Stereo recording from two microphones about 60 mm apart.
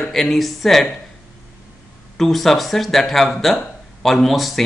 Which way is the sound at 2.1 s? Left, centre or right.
Centre.